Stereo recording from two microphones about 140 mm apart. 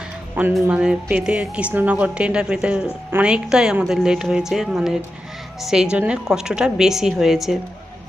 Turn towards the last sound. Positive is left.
turn(degrees=0)  # may be behind; listen again after turning